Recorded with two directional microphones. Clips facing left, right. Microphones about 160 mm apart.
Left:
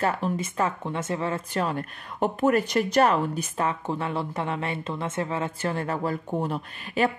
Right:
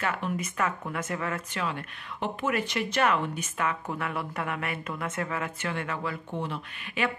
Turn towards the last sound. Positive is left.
turn(degrees=40)  # may be behind; listen again after turning